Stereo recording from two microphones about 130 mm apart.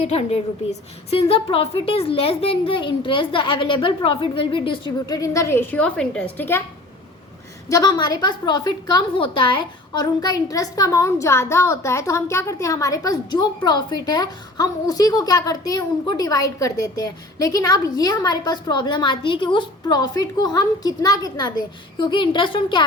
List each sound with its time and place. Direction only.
0.0 s a woman's voice: 55° left (ahead or behind)
5.0 s a woman's voice: 25° left (ahead or behind)
7.7 s a woman's voice: 30° left (ahead or behind)